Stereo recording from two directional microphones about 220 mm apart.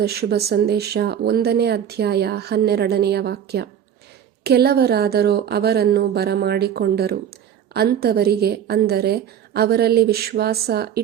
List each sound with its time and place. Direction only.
0.0 s speech: 45° right (ahead or behind)